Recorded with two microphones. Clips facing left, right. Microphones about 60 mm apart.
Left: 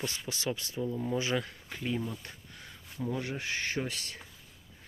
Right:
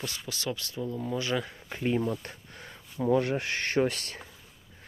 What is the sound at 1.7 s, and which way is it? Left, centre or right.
Speech, right.